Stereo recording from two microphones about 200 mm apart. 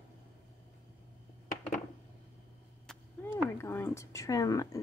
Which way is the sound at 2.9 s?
10° left (ahead or behind).